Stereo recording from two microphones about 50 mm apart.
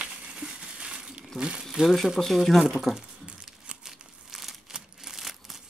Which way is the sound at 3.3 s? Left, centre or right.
Centre.